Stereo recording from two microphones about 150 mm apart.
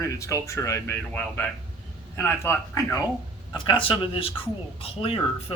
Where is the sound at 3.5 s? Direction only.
35° left (ahead or behind).